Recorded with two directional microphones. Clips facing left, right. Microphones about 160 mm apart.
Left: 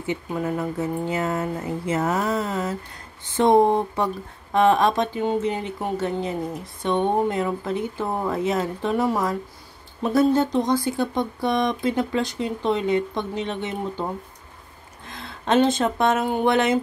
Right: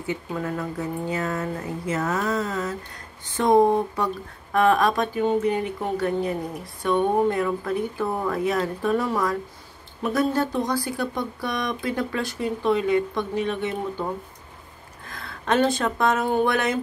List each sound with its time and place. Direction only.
0.0 s speech: 20° left (ahead or behind)
15.0 s speech: 25° left (ahead or behind)